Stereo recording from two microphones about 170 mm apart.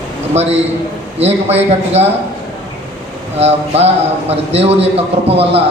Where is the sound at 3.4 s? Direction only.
40° right (ahead or behind).